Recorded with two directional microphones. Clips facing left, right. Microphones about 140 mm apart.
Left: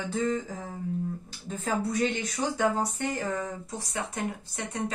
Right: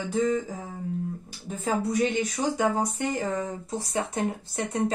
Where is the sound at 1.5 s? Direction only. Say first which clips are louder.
Right 3 dB; 15° right (ahead or behind).